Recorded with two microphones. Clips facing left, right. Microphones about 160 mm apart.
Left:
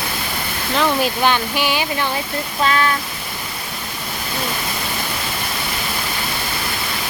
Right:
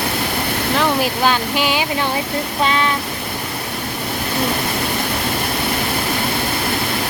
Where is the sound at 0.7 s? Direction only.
15° right (ahead or behind).